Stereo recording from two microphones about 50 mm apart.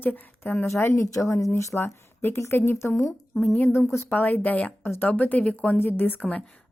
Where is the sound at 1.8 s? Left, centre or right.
Left.